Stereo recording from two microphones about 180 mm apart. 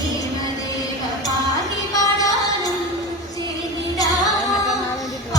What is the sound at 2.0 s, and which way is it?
Music, 20° left (ahead or behind).